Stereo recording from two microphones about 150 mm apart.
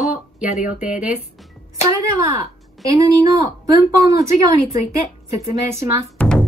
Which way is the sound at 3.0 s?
20° right (ahead or behind).